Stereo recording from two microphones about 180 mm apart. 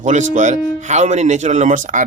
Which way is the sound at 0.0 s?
40° right (ahead or behind).